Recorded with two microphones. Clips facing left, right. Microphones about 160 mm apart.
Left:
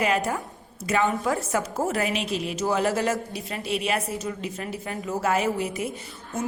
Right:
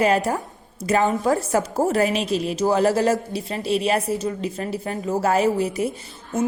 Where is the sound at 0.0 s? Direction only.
35° right (ahead or behind).